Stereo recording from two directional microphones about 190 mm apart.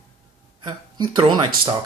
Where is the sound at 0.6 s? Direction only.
25° right (ahead or behind).